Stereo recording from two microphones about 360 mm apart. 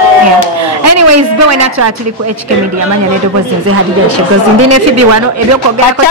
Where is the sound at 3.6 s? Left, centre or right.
Right.